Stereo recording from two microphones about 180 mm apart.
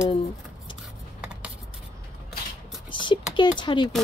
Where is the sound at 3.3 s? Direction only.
25° left (ahead or behind).